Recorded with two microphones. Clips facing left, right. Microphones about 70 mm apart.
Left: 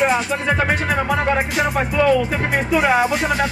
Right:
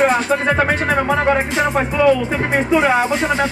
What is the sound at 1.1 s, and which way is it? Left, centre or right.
Speech, right.